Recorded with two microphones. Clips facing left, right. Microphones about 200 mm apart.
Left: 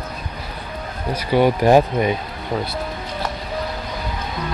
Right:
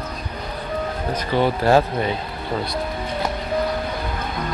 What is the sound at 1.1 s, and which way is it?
Speech, 15° left (ahead or behind).